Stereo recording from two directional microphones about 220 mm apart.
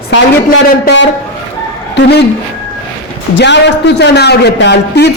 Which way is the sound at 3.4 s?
50° left (ahead or behind).